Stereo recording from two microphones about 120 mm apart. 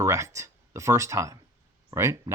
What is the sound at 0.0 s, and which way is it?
Speech, 25° right (ahead or behind).